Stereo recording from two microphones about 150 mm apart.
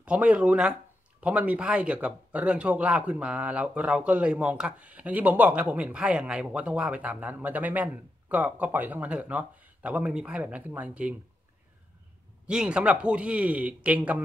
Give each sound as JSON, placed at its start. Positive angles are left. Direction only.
{"t": 0.0, "sound": "speech", "side_deg": -10}
{"t": 12.4, "sound": "speech", "side_deg": -5}